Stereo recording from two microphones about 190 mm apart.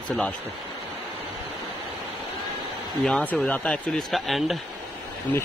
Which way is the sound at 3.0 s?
Centre (ahead or behind).